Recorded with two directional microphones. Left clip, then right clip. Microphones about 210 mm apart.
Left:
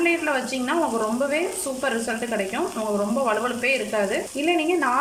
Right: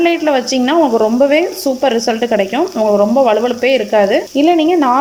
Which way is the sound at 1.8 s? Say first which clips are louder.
Right 11 dB; 35° right (ahead or behind).